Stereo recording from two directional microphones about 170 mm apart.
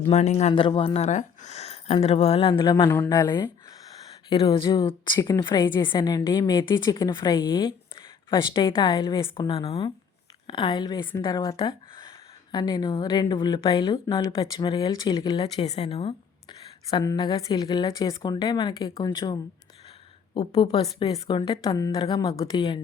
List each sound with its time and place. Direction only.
0.1 s speech: 40° left (ahead or behind)
16.9 s speech: 25° left (ahead or behind)
20.5 s speech: 25° left (ahead or behind)